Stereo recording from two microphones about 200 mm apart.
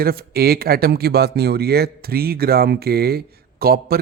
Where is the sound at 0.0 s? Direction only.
50° right (ahead or behind).